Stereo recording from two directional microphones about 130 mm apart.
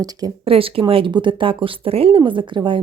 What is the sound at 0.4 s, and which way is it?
Speech, 45° right (ahead or behind).